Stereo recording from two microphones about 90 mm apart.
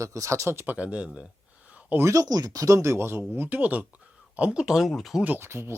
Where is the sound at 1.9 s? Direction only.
30° right (ahead or behind).